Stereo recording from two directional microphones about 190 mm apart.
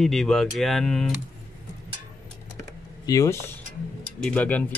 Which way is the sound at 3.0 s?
15° left (ahead or behind).